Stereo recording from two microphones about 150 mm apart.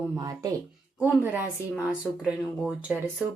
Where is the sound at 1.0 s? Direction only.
10° right (ahead or behind).